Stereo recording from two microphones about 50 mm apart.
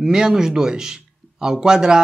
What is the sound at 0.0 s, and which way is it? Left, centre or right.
Speech, centre.